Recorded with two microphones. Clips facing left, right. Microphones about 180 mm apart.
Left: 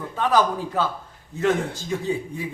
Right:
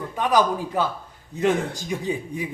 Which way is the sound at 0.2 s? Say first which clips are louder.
Even; 15° right (ahead or behind).